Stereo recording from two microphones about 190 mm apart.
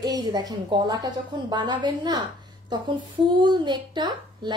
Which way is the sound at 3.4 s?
25° right (ahead or behind).